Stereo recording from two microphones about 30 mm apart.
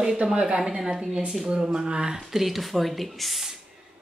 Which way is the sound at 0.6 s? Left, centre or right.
Centre.